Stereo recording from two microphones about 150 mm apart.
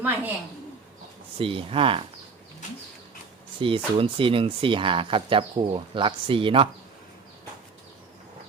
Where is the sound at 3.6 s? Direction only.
35° right (ahead or behind).